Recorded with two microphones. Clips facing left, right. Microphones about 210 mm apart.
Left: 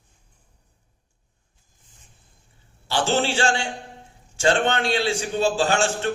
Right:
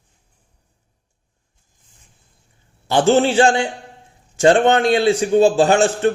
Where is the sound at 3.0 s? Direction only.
45° right (ahead or behind).